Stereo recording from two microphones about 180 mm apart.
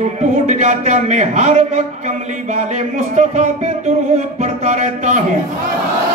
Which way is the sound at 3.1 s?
40° right (ahead or behind).